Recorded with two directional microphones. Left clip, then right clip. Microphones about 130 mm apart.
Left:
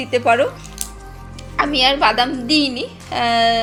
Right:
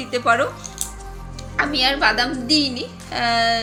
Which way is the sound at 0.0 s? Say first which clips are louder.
Left 3 dB; 10° left (ahead or behind).